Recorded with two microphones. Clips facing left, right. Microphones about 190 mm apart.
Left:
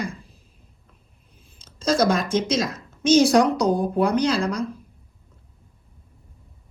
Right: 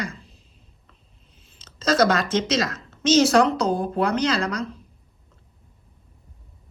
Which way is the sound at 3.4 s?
10° left (ahead or behind).